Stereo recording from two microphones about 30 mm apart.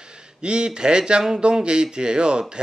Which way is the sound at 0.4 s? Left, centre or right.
Right.